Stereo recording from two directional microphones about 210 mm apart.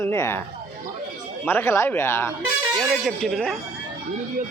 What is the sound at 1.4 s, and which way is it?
A man's voice, 10° left (ahead or behind).